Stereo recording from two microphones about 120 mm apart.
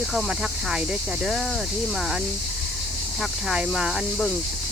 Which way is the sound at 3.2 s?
5° right (ahead or behind).